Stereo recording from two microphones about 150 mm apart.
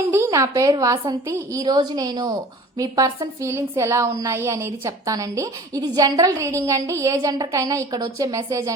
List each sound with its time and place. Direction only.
0.1 s a woman's voice: 20° right (ahead or behind)